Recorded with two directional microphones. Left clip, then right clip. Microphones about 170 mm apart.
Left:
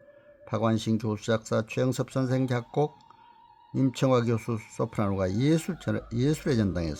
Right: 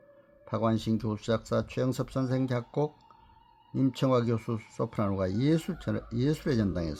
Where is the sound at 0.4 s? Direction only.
20° left (ahead or behind).